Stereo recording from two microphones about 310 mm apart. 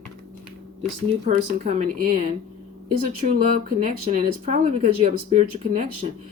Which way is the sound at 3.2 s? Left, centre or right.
Right.